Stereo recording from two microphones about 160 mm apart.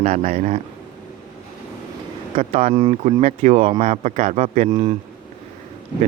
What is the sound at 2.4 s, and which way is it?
Speech, 40° right (ahead or behind).